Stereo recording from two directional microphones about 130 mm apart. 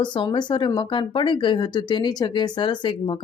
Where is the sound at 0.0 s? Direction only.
35° left (ahead or behind).